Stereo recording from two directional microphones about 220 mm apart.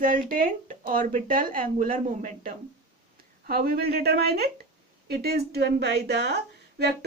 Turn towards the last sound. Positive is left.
turn(degrees=-50)  # may be behind; listen again after turning